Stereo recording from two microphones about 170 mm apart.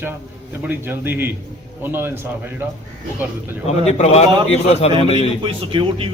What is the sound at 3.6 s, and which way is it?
A man's voice, 40° left (ahead or behind).